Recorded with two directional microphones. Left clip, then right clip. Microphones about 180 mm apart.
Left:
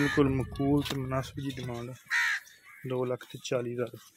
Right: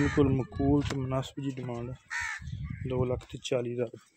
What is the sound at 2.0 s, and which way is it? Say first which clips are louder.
Crow: left 8 dB; 65° right (ahead or behind).